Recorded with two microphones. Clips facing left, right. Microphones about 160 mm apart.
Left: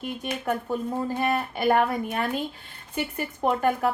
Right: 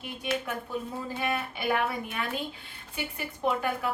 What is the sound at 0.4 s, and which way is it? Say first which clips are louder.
Speech: left 7 dB; 45° left (ahead or behind).